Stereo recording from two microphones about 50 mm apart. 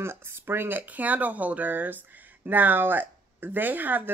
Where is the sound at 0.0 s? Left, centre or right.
Right.